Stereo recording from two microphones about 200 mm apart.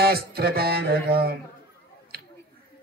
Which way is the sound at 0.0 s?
50° right (ahead or behind).